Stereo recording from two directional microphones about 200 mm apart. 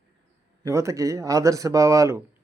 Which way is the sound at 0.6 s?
15° right (ahead or behind).